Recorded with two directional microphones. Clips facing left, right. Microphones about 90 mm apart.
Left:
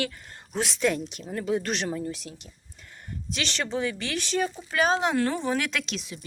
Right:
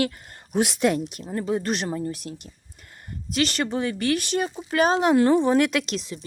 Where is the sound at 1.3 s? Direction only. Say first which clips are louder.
Right 2 dB; 35° right (ahead or behind).